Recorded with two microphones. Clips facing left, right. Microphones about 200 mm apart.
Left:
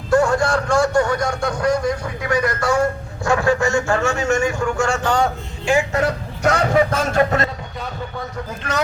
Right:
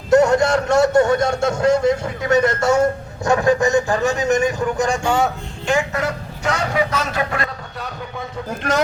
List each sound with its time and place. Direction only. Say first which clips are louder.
0.1 s a man's voice: right 3 dB; 20° right (ahead or behind)
5.9 s vehicle: left 3 dB; 30° left (ahead or behind)
6.5 s speech: left 3 dB; 50° left (ahead or behind)